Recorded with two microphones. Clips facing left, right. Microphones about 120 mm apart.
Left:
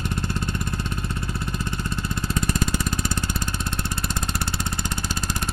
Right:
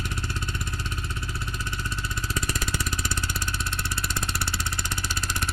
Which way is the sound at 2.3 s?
50° left (ahead or behind).